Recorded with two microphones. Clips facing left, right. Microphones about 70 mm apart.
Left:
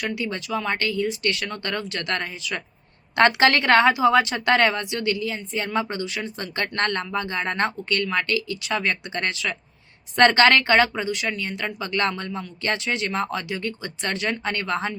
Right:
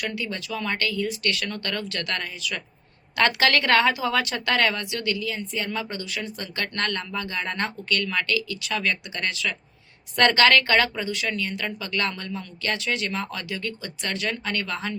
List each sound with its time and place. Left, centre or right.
0.0 s a woman's voice: left